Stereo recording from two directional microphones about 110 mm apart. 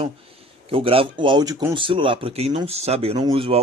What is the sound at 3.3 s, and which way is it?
Speech, 55° right (ahead or behind).